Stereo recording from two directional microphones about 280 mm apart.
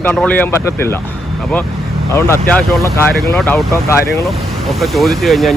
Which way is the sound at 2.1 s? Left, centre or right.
Centre.